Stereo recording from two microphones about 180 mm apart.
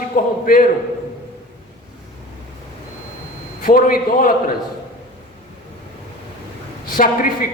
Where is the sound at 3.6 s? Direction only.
50° left (ahead or behind).